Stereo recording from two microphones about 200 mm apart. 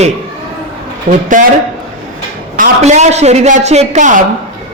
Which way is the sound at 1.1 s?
40° right (ahead or behind).